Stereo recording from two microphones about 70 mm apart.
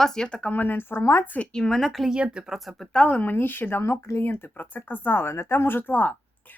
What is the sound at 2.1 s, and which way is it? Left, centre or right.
Speech, centre.